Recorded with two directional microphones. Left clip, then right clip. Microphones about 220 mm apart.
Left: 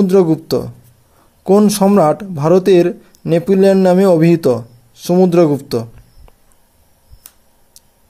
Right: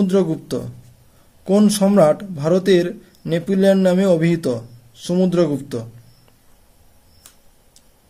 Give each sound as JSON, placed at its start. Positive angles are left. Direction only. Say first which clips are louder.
{"t": 0.0, "sound": "speech", "louder": "left 7 dB", "side_deg": 30}